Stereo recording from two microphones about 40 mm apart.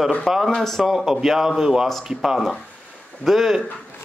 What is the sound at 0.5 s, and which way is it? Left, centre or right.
Speech, centre.